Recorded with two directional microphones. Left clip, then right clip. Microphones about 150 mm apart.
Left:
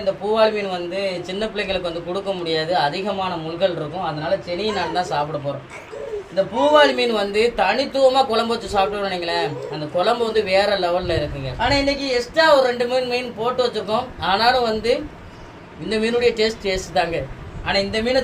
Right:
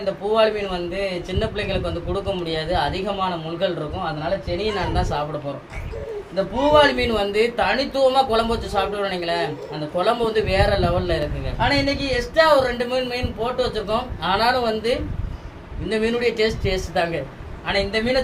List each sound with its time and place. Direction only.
0.0 s a man's voice: 25° left (ahead or behind)
6.3 s a man's voice: 25° left (ahead or behind)